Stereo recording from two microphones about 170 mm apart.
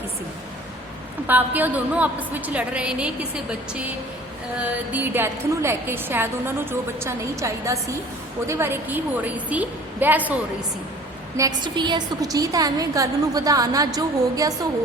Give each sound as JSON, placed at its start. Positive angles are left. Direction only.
{"t": 1.3, "sound": "a woman's voice", "side_deg": -10}
{"t": 4.6, "sound": "a woman's voice", "side_deg": -10}
{"t": 11.3, "sound": "a woman's voice", "side_deg": -20}